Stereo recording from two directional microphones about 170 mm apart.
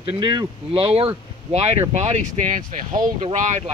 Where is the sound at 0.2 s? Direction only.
25° right (ahead or behind).